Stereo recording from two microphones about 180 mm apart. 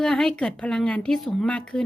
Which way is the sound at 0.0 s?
5° left (ahead or behind).